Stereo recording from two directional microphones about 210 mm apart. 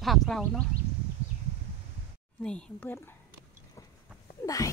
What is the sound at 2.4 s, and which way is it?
Speech, 5° left (ahead or behind).